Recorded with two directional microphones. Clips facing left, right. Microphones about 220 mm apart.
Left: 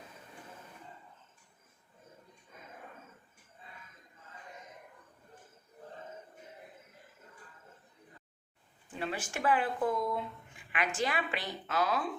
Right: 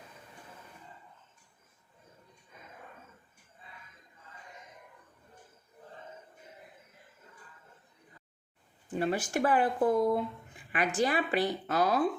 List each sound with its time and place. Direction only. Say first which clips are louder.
8.9 s a woman's voice: right 7 dB; 40° right (ahead or behind)